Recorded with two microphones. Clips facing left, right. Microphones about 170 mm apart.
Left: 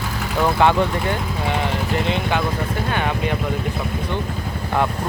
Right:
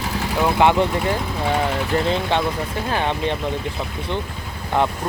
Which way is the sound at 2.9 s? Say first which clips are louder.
Right 2 dB; 30° right (ahead or behind).